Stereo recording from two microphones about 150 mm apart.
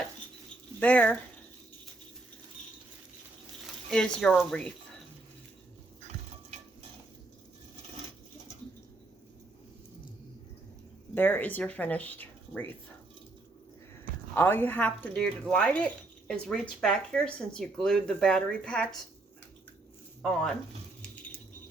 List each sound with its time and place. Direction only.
0.8 s speech: 10° left (ahead or behind)
3.8 s speech: 5° left (ahead or behind)
11.1 s speech: 15° left (ahead or behind)
14.3 s speech: 15° left (ahead or behind)
20.2 s speech: 5° left (ahead or behind)